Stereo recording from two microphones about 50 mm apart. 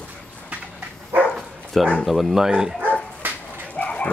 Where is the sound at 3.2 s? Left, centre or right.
Right.